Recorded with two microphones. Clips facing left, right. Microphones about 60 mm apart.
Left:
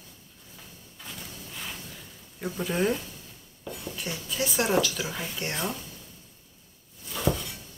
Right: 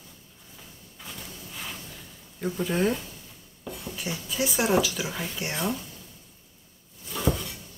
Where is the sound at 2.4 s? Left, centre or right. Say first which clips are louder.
Right 2 dB; centre.